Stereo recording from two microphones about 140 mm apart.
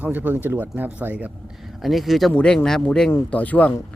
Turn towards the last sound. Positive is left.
turn(degrees=10)  # may be behind; listen again after turning